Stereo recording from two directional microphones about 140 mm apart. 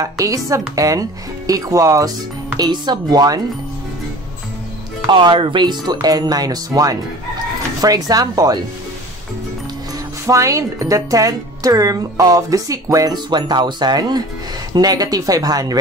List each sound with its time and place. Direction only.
0.0 s speech: 25° right (ahead or behind)
5.0 s speech: 35° right (ahead or behind)
10.2 s speech: 20° right (ahead or behind)